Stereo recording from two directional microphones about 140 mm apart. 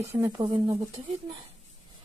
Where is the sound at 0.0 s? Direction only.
20° right (ahead or behind).